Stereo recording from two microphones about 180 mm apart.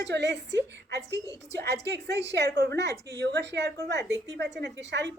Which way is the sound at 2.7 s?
70° right (ahead or behind).